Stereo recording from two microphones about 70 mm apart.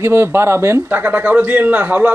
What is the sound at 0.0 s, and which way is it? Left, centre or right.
Speech, right.